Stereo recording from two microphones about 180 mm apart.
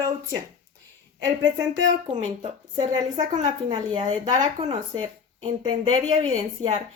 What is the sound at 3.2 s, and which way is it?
Speech, 40° right (ahead or behind).